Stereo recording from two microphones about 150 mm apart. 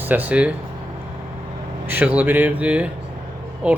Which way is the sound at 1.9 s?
10° right (ahead or behind).